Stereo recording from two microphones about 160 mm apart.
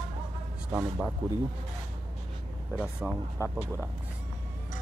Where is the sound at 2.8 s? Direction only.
5° right (ahead or behind).